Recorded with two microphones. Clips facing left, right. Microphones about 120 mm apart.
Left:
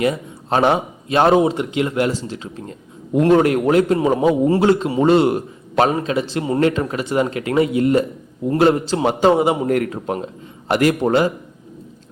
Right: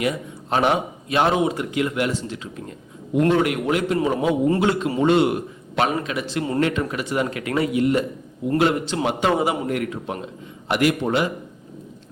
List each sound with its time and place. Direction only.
0.0 s a man's voice: 35° left (ahead or behind)
7.8 s speech: 45° left (ahead or behind)
8.5 s a man's voice: 35° left (ahead or behind)
9.6 s a man's voice: 40° left (ahead or behind)